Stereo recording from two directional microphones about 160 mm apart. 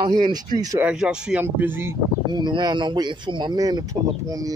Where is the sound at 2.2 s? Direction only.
25° right (ahead or behind).